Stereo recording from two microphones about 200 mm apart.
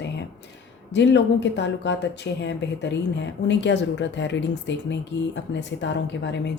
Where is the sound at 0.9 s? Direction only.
60° left (ahead or behind).